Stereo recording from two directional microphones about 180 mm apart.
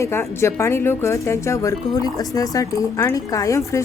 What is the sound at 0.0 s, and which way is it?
A woman's voice, 15° left (ahead or behind).